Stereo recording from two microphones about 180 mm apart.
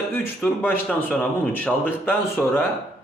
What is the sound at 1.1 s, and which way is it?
Speech, 10° left (ahead or behind).